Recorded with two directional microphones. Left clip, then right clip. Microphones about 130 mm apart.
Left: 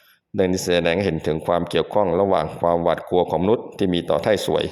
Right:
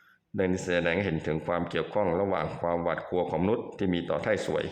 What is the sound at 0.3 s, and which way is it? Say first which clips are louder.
Speech: left 8 dB; 45° left (ahead or behind).